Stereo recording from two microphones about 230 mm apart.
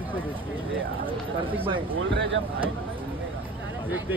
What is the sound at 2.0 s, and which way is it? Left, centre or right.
Speech, right.